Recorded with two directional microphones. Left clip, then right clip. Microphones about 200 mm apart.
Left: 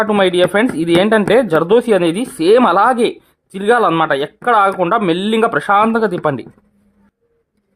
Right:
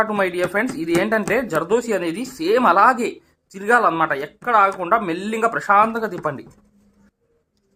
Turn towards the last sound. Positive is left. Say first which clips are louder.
# left 8 dB
turn(degrees=50)  # may be behind; listen again after turning